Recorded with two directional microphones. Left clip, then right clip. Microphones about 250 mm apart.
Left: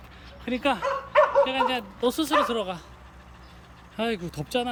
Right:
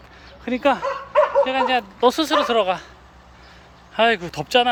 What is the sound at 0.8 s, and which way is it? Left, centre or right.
Dog, right.